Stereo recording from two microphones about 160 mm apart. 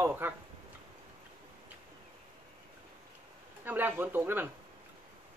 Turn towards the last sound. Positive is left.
turn(degrees=-15)  # may be behind; listen again after turning